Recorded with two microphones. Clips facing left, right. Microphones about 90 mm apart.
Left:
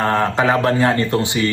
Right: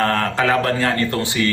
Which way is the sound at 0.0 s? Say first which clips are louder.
Left 2 dB; 20° left (ahead or behind).